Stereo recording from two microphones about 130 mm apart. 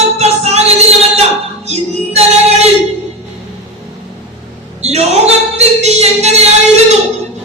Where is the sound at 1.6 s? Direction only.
55° right (ahead or behind).